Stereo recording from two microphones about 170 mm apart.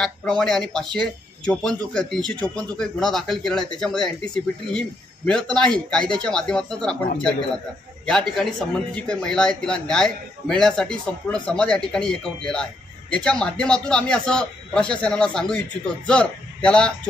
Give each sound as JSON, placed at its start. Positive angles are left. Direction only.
{"t": 0.0, "sound": "speech", "side_deg": 5}